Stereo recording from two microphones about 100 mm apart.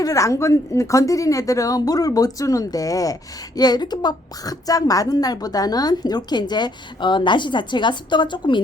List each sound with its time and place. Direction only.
0.0 s a woman's voice: 35° left (ahead or behind); by 8.6 s 50° left (ahead or behind)